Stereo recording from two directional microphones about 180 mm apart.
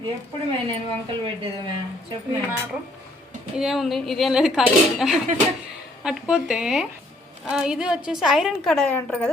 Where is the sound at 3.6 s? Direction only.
Centre (ahead or behind).